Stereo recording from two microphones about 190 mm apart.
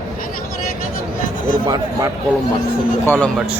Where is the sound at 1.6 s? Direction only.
20° right (ahead or behind).